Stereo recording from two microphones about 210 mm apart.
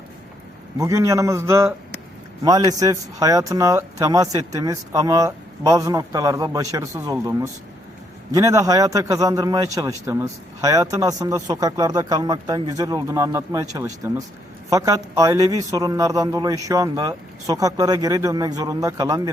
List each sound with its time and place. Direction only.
0.8 s speech: 15° right (ahead or behind)